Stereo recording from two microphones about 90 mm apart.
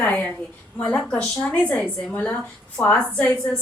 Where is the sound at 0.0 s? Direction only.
15° left (ahead or behind).